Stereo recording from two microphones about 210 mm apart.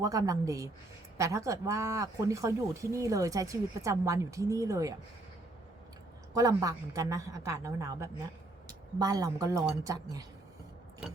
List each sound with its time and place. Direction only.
0.0 s speech: 15° right (ahead or behind)
6.3 s speech: 15° right (ahead or behind)